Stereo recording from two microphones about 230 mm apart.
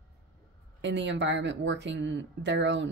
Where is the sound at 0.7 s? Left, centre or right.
Right.